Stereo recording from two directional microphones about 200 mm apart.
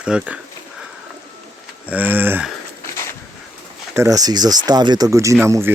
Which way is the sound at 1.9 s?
10° right (ahead or behind).